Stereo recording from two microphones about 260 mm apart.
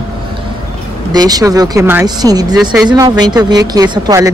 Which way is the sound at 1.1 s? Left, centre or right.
Centre.